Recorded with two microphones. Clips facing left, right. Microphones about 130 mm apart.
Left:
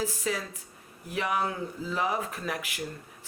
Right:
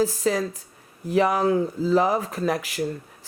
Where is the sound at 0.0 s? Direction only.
35° right (ahead or behind).